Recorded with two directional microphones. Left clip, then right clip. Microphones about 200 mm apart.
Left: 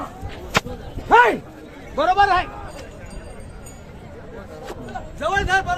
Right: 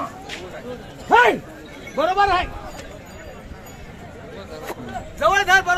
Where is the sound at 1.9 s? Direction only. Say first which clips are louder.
Left 1 dB; 35° right (ahead or behind).